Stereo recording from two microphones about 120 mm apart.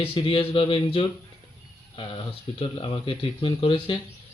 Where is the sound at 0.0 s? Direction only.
45° left (ahead or behind).